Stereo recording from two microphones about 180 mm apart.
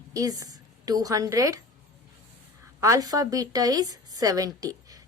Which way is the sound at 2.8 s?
20° right (ahead or behind).